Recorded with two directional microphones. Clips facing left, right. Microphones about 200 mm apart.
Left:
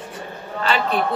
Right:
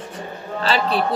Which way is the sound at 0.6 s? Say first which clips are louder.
Right 1 dB; 35° right (ahead or behind).